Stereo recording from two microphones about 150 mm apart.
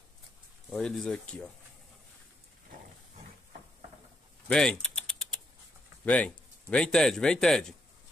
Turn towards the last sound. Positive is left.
turn(degrees=5)  # may be behind; listen again after turning